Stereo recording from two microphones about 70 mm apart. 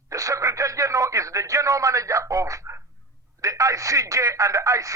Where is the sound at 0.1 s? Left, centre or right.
Right.